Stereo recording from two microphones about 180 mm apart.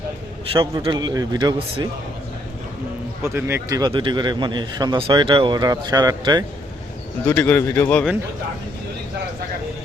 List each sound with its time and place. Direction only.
0.5 s a man's voice: 30° right (ahead or behind)
3.2 s a man's voice: 10° right (ahead or behind)
7.3 s a man's voice: 10° left (ahead or behind)